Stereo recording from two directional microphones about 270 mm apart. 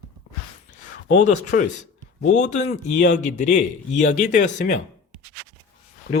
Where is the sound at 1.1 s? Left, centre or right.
Left.